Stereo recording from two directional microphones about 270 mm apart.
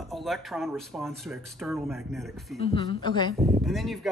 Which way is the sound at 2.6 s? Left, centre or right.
Centre.